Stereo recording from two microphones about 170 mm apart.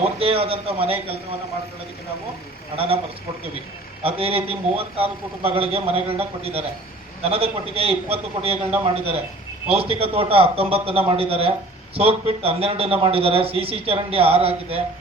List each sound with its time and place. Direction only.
0.2 s a man's voice: 35° right (ahead or behind)
2.7 s a man's voice: 35° right (ahead or behind)
4.0 s a man's voice: 35° right (ahead or behind)